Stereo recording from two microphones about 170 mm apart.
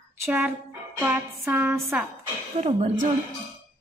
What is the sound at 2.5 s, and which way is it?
Speech, 40° right (ahead or behind).